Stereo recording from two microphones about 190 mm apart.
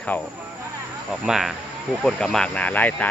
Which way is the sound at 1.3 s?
Centre (ahead or behind).